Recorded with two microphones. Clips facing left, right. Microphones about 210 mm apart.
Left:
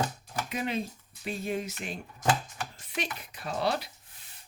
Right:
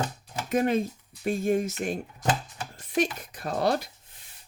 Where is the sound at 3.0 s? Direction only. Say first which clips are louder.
Right 9 dB; 45° right (ahead or behind).